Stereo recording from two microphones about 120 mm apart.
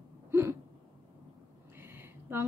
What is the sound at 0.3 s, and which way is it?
Hiccup, 20° right (ahead or behind).